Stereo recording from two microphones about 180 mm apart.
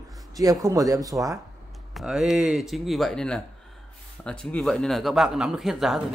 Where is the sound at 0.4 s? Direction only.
20° right (ahead or behind).